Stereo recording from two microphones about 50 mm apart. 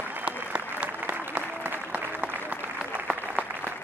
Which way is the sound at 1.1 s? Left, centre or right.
Right.